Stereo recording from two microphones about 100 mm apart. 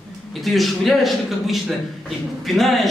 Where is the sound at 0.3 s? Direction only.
Centre (ahead or behind).